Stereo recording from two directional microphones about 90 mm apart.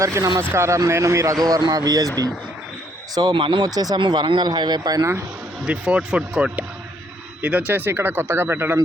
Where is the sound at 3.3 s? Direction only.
70° right (ahead or behind).